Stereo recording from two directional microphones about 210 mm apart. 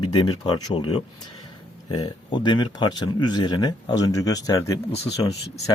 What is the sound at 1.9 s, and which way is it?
Speech, 25° left (ahead or behind).